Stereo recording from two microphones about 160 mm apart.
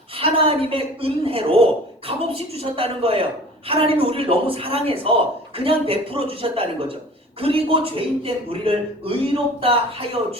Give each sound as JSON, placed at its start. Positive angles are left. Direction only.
{"t": 0.2, "sound": "a man's voice", "side_deg": -35}